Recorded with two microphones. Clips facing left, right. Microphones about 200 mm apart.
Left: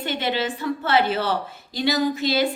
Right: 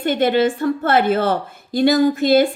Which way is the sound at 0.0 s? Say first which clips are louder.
Right 9 dB; 50° right (ahead or behind).